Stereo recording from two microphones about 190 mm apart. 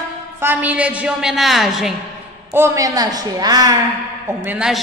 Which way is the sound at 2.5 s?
15° right (ahead or behind).